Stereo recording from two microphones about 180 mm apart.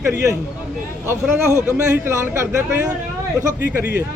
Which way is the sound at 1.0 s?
15° right (ahead or behind).